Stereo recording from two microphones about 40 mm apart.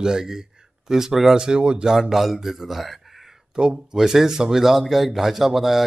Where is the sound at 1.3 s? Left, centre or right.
Right.